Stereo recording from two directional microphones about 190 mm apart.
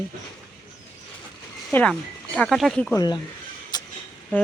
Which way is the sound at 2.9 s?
20° left (ahead or behind).